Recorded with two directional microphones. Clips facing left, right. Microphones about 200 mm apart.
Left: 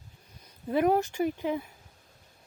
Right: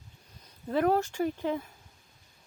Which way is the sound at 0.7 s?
15° left (ahead or behind).